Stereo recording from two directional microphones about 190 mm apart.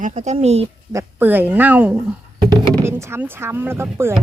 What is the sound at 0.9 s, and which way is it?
A woman's voice, 15° right (ahead or behind).